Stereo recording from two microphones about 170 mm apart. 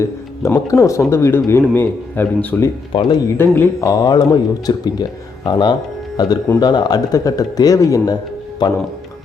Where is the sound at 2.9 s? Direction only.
25° left (ahead or behind).